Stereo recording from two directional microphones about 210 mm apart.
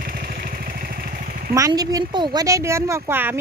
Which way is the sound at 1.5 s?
15° right (ahead or behind).